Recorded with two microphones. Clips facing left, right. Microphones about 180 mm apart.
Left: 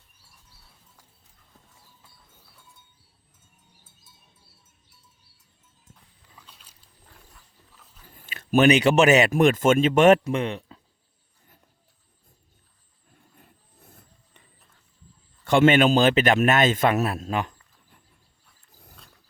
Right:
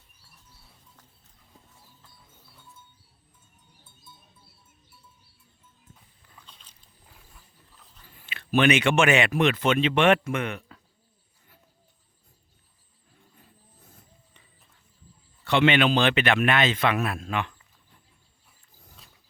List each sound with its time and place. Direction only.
6.3 s boat: 5° left (ahead or behind)
7.0 s wild animals: 5° right (ahead or behind)
8.1 s a man's voice: 45° left (ahead or behind)
15.4 s a man's voice: 45° left (ahead or behind)